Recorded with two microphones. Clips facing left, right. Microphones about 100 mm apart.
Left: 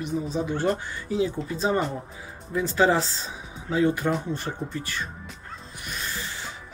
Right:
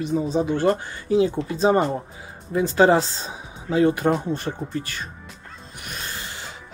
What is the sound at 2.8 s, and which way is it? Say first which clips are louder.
Speech: right 5 dB; 60° right (ahead or behind).